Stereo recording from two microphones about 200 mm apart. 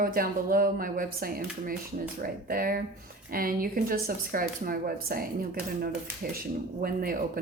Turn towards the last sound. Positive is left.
turn(degrees=-45)  # may be behind; listen again after turning